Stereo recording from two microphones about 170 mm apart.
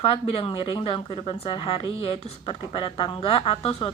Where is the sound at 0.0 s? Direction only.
35° left (ahead or behind).